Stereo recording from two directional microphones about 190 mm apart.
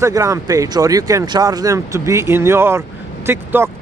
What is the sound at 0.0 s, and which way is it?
Speech, 15° right (ahead or behind).